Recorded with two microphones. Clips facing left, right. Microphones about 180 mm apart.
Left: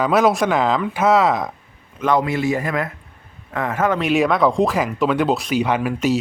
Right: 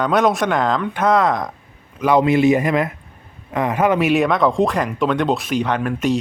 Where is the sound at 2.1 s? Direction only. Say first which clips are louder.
Right 8 dB; 20° right (ahead or behind).